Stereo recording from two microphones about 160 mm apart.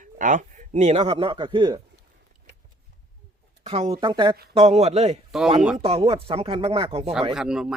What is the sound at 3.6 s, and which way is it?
Speech, 40° right (ahead or behind).